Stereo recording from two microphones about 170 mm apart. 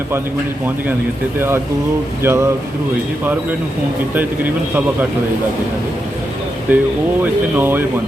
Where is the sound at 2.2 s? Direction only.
15° right (ahead or behind).